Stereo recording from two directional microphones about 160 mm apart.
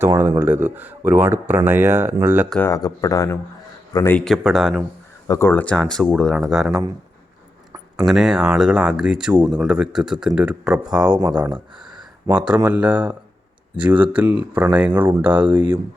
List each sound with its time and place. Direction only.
0.2 s speech: 10° right (ahead or behind)
2.6 s speech: 20° left (ahead or behind)
4.2 s speech: centre (ahead or behind)
5.3 s speech: 15° left (ahead or behind); by 6.8 s centre (ahead or behind)
8.0 s speech: 5° right (ahead or behind)